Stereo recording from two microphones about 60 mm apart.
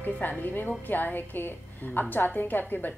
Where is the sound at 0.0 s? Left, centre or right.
Left.